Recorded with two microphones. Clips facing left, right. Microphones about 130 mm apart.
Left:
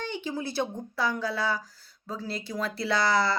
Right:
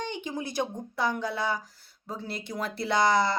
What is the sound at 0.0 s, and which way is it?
A woman's voice, 15° right (ahead or behind).